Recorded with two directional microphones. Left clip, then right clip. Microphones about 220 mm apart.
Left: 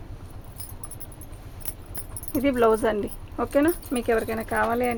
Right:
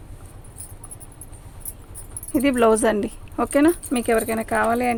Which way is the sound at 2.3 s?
45° right (ahead or behind).